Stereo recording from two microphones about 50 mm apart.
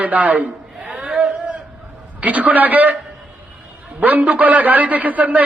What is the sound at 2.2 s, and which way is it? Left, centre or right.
Speech, right.